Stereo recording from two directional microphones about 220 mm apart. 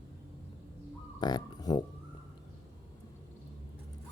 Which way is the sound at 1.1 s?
20° left (ahead or behind).